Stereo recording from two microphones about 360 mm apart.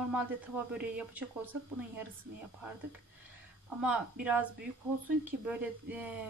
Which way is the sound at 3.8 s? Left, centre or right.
Centre.